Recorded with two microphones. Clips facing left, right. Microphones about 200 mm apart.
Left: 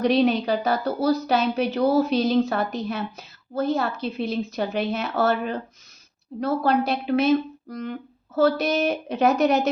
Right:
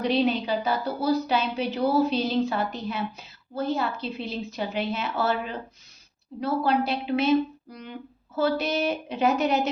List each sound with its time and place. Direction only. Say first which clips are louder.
0.0 s a woman's voice: left 4 dB; 45° left (ahead or behind)